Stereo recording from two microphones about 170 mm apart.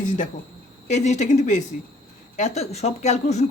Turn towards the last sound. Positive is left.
turn(degrees=40)  # may be behind; listen again after turning